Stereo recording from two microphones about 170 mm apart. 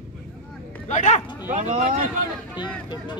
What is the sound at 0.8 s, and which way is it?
Speech, 45° left (ahead or behind).